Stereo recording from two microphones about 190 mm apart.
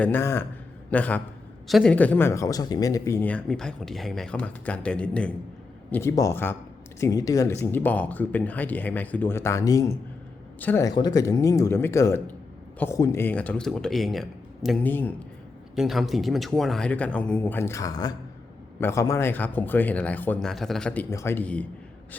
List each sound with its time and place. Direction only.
0.0 s a man's voice: 10° left (ahead or behind)